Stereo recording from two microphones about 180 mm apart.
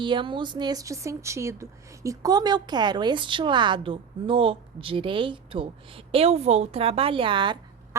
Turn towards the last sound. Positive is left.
turn(degrees=-25)  # may be behind; listen again after turning